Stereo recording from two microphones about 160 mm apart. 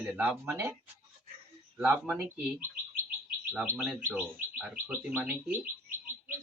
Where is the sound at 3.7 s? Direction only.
5° right (ahead or behind).